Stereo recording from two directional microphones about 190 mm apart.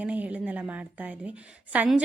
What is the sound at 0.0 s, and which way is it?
A woman's voice, 10° right (ahead or behind).